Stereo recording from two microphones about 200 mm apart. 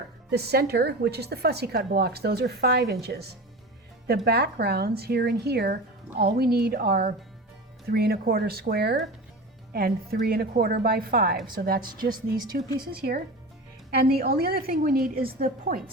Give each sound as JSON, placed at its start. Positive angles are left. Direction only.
{"t": 0.3, "sound": "a woman's voice", "side_deg": -55}
{"t": 4.3, "sound": "a woman's voice", "side_deg": -55}